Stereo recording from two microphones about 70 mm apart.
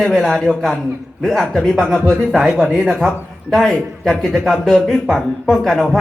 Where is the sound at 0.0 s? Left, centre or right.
Centre.